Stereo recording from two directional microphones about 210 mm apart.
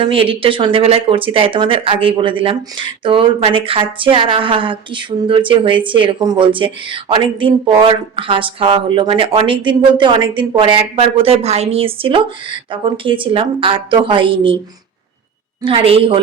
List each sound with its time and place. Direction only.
0.0 s speech: 25° right (ahead or behind)
15.6 s speech: 25° right (ahead or behind)